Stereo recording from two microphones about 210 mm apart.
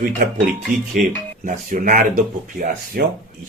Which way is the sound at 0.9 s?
40° right (ahead or behind).